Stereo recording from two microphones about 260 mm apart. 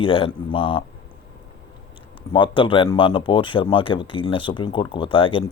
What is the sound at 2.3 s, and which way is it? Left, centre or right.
Speech, centre.